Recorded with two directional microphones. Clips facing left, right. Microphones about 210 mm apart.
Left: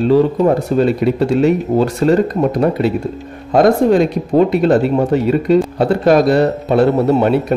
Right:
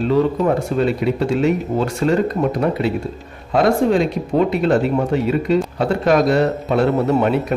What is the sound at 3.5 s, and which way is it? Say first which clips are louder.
A man's voice: left 4 dB; 40° left (ahead or behind).